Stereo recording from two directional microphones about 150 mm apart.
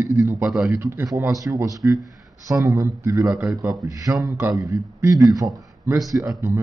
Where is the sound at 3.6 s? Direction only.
20° right (ahead or behind).